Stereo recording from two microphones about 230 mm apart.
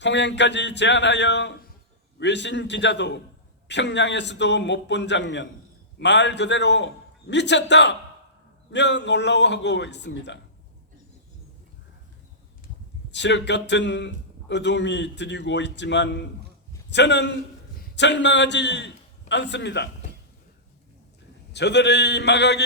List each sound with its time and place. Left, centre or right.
0.0 s a man's voice: left
13.1 s a man's voice: left
21.5 s a man's voice: left